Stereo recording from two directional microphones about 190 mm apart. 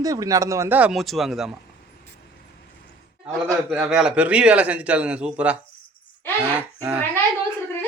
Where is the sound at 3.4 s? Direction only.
5° right (ahead or behind).